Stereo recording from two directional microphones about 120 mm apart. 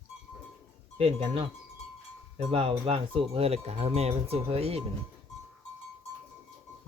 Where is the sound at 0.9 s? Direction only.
55° right (ahead or behind).